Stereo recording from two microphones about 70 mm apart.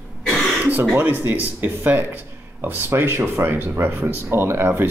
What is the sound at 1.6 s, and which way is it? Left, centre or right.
Speech, right.